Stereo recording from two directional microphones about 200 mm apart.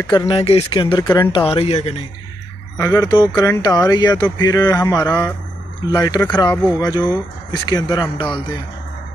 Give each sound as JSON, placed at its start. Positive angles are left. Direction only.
{"t": 0.0, "sound": "speech", "side_deg": 20}
{"t": 1.3, "sound": "speech", "side_deg": 25}
{"t": 2.8, "sound": "speech", "side_deg": 20}